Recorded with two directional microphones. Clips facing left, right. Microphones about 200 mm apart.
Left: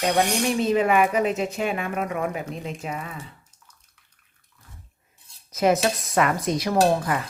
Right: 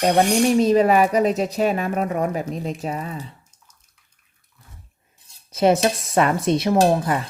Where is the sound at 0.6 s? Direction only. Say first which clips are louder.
Right 3 dB; 35° right (ahead or behind).